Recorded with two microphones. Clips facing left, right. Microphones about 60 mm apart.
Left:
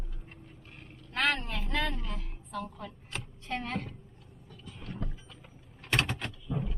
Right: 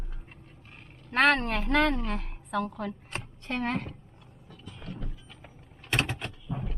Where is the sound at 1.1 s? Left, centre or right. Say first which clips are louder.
Right 7 dB; right.